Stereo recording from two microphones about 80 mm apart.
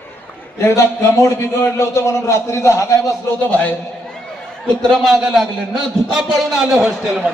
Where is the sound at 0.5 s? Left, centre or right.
Left.